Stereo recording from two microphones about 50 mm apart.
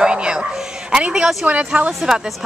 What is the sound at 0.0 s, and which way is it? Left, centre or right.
Bow-wow, centre.